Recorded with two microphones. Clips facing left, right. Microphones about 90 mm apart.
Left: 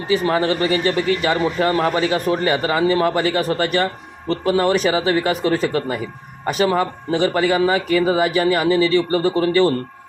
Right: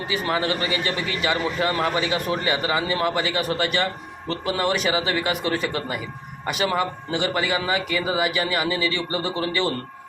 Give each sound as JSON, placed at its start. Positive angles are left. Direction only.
{"t": 0.1, "sound": "a man's voice", "side_deg": 35}